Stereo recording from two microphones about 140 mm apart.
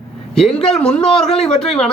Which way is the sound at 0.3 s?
5° left (ahead or behind).